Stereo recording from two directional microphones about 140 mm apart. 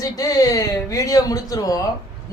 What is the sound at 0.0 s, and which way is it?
Speech, 25° left (ahead or behind).